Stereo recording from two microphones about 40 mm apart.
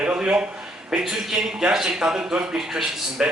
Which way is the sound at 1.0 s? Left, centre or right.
Centre.